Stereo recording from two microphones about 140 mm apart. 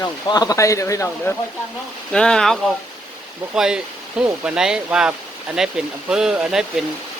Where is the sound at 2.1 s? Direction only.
5° left (ahead or behind).